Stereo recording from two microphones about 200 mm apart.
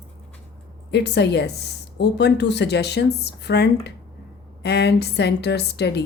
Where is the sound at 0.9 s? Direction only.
60° left (ahead or behind).